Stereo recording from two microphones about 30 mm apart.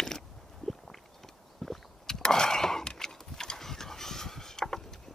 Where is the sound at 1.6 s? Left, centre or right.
Centre.